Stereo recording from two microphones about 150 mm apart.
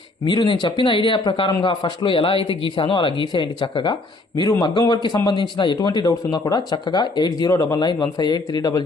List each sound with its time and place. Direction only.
0.3 s speech: 30° left (ahead or behind)